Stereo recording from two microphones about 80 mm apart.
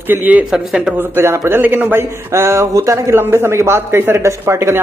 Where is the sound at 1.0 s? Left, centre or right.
Right.